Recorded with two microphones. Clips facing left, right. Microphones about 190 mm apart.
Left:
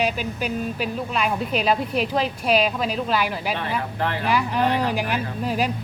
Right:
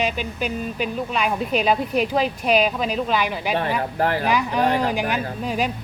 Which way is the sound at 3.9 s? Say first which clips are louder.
Right 6 dB; 40° right (ahead or behind).